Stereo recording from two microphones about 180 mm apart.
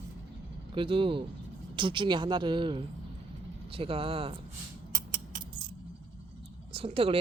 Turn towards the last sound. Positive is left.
turn(degrees=-30)  # may be behind; listen again after turning